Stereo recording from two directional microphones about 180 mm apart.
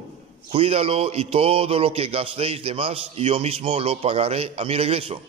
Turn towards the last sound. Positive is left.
turn(degrees=-35)  # may be behind; listen again after turning